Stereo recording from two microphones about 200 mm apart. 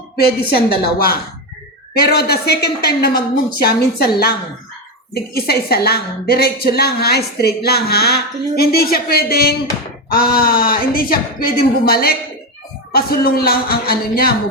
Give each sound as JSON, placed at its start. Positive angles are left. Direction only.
{"t": 0.8, "sound": "a woman's voice", "side_deg": 50}